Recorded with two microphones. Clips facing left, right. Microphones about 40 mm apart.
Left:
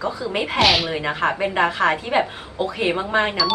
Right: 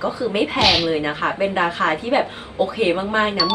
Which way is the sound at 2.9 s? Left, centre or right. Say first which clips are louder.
Right 1 dB; centre.